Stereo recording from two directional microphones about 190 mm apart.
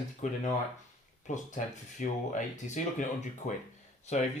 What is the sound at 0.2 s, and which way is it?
Speech, 40° left (ahead or behind).